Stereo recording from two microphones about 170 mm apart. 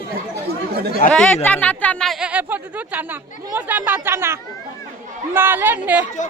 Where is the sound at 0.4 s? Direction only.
65° right (ahead or behind).